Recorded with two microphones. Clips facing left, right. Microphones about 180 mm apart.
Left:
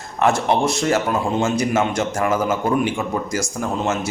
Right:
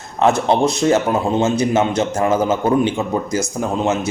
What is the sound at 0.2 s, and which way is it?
A man's voice, 20° right (ahead or behind).